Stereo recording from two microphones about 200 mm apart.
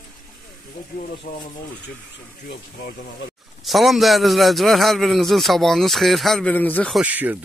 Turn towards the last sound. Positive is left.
turn(degrees=-10)  # may be behind; listen again after turning